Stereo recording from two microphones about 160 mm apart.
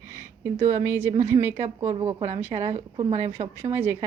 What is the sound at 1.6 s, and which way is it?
A woman's voice, 45° right (ahead or behind).